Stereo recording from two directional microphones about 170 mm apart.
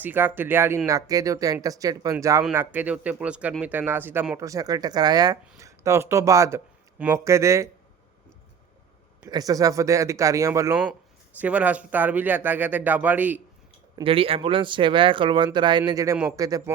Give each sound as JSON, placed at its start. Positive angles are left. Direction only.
{"t": 0.0, "sound": "a man's voice", "side_deg": -10}
{"t": 9.2, "sound": "a man's voice", "side_deg": -20}
{"t": 13.9, "sound": "a man's voice", "side_deg": -30}